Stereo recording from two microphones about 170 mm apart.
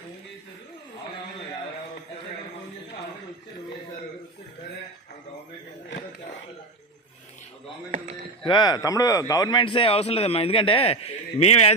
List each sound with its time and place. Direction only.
7.9 s speech: 45° right (ahead or behind)
8.4 s a man's voice: 25° left (ahead or behind)